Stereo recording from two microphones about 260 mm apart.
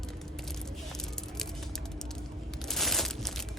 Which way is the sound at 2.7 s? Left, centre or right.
Centre.